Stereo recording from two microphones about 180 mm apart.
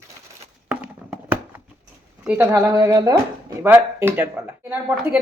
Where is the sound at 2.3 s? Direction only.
15° right (ahead or behind).